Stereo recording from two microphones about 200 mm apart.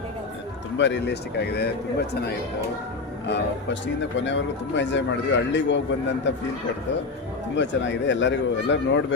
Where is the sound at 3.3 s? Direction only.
60° left (ahead or behind).